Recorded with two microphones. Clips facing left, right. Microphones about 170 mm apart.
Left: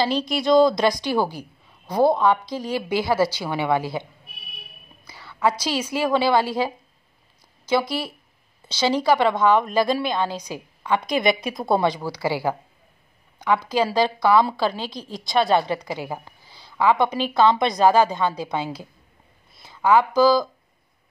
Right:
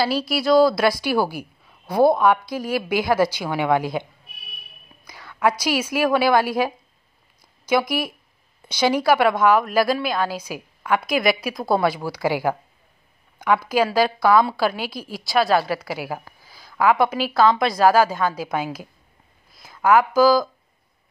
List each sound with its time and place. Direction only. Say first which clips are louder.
0.0 s a woman's voice: right 1 dB; 5° right (ahead or behind)